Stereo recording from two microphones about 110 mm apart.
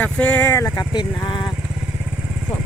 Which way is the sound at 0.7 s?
45° left (ahead or behind).